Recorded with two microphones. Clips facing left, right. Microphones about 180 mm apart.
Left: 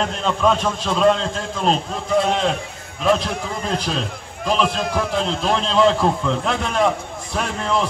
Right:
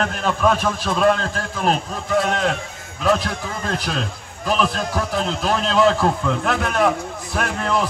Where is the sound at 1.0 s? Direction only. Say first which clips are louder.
Left 1 dB; 25° left (ahead or behind).